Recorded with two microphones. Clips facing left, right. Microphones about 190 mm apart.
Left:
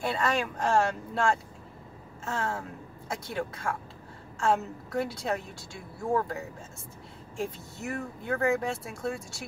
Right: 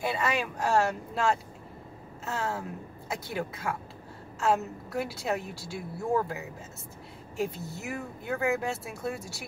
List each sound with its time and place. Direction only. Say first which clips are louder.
0.0 s a woman's voice: left 1 dB; 10° right (ahead or behind)